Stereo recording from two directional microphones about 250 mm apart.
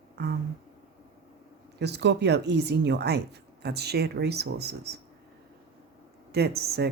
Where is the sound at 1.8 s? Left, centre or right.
Right.